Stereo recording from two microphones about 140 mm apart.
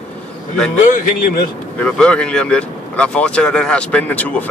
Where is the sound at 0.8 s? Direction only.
70° left (ahead or behind).